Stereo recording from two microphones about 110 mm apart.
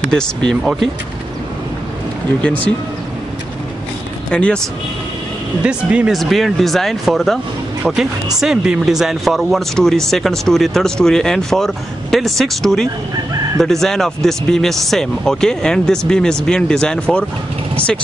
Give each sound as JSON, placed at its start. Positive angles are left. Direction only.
{"t": 0.1, "sound": "speech", "side_deg": 5}
{"t": 2.4, "sound": "speech", "side_deg": 15}
{"t": 4.3, "sound": "speech", "side_deg": 10}
{"t": 5.6, "sound": "speech", "side_deg": -10}
{"t": 6.1, "sound": "speech", "side_deg": 0}